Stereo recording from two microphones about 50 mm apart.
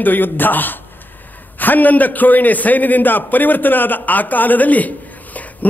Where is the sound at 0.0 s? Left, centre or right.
Left.